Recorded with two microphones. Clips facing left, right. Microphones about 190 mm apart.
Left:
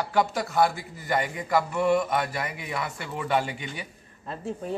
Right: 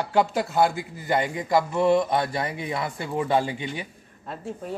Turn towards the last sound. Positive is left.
turn(degrees=0)  # may be behind; listen again after turning